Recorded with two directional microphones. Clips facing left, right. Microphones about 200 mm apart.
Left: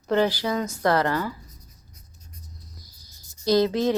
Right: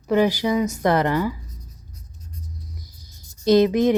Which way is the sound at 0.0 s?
10° right (ahead or behind).